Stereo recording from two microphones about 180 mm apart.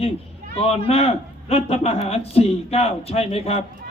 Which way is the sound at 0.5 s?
30° left (ahead or behind).